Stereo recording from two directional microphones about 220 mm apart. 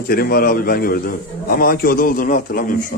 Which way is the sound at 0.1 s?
45° left (ahead or behind).